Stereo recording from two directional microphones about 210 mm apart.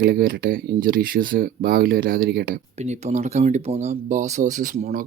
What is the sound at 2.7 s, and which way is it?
Speech, 30° right (ahead or behind).